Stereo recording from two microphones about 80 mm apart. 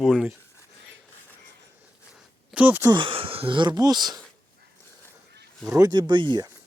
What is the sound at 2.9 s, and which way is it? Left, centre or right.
Speech, right.